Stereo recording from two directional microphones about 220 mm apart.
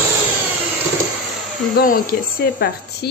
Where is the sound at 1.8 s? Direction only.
40° left (ahead or behind).